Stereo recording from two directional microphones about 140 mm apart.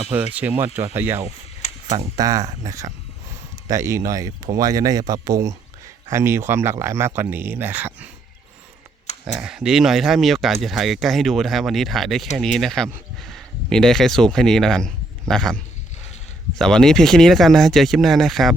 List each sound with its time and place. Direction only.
0.1 s speech: 10° right (ahead or behind)
1.6 s tick-tock: 55° left (ahead or behind)
2.1 s speech: 25° right (ahead or behind); by 8.1 s 10° right (ahead or behind)
9.2 s speech: 5° right (ahead or behind)